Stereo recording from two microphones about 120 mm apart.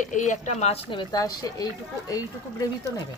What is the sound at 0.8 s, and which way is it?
Speech, 35° left (ahead or behind).